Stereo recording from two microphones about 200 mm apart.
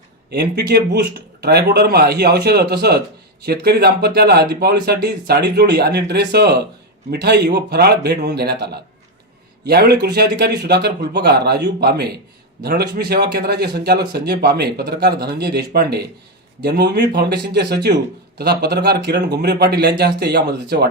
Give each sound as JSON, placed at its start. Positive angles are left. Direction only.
{"t": 0.3, "sound": "speech", "side_deg": -55}